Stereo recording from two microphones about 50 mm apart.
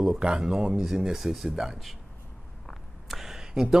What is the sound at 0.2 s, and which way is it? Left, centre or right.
A man's voice, centre.